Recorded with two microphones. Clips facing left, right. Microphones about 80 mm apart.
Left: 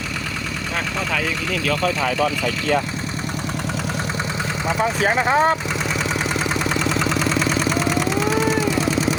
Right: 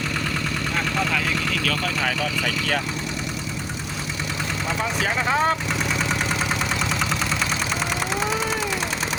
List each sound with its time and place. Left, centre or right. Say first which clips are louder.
4.8 s speech: left 6 dB; left